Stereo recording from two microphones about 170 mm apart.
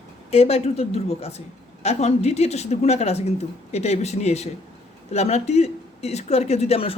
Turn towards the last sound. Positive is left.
turn(degrees=35)  # may be behind; listen again after turning